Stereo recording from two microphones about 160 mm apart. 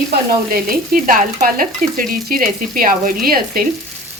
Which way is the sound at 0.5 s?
60° right (ahead or behind).